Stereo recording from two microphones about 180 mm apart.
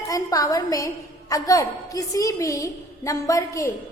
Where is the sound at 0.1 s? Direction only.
20° left (ahead or behind).